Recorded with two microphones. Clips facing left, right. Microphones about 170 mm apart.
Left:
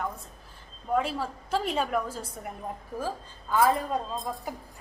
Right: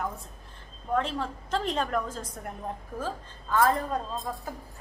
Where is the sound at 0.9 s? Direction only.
10° left (ahead or behind).